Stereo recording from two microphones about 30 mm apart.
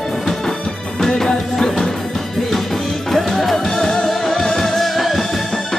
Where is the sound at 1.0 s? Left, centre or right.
Centre.